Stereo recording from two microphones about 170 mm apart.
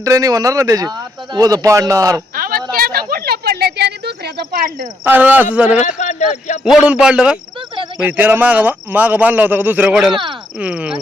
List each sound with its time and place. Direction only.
0.0 s speech: 20° right (ahead or behind)
2.3 s a sound: 55° right (ahead or behind); by 4.6 s 75° right (ahead or behind)
5.0 s speech: 10° right (ahead or behind)
6.0 s speech: 45° left (ahead or behind)
6.7 s a man's voice: 5° right (ahead or behind)